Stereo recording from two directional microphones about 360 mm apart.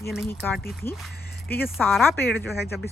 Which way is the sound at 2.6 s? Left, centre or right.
Left.